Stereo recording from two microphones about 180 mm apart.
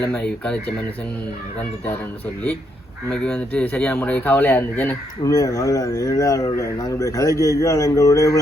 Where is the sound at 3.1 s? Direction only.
5° left (ahead or behind).